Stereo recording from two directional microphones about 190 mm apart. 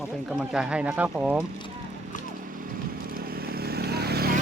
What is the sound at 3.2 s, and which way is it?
Vehicle, 50° right (ahead or behind).